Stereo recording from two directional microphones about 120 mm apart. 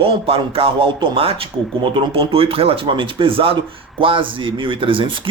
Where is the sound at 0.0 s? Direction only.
50° right (ahead or behind).